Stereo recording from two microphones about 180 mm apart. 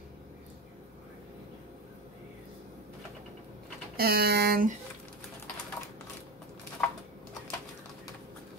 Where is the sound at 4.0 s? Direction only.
60° right (ahead or behind).